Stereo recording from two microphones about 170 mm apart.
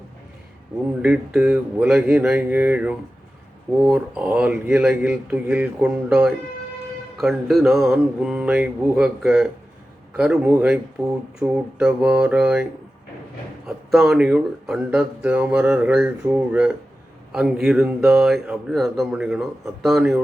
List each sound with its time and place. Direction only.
1.0 s speech: 5° right (ahead or behind)
13.7 s speech: centre (ahead or behind)